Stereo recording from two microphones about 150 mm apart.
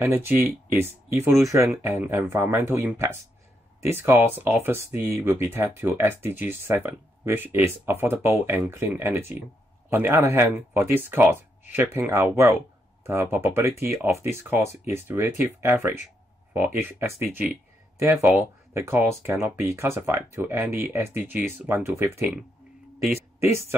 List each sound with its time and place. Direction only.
0.0 s speech: 15° right (ahead or behind)